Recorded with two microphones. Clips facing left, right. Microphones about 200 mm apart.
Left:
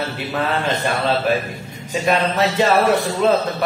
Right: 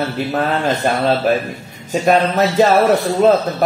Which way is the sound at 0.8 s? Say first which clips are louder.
Right 4 dB; 45° right (ahead or behind).